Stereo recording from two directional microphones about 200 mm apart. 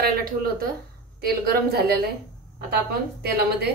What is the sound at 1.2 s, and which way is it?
Speech, 50° right (ahead or behind).